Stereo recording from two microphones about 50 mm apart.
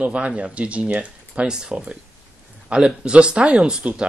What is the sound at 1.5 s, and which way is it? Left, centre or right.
Speech, centre.